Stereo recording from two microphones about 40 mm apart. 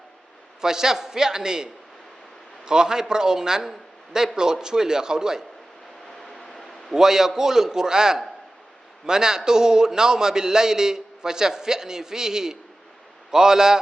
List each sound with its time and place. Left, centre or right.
0.6 s a man's voice: centre
6.2 s a sound: centre
6.9 s a man's voice: centre